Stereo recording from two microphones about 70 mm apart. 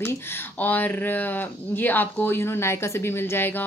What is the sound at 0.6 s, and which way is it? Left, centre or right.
A woman's voice, left.